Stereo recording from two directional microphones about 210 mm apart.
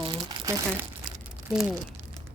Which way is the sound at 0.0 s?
25° right (ahead or behind).